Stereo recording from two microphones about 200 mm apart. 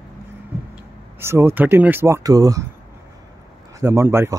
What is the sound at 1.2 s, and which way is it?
Speech, 10° right (ahead or behind).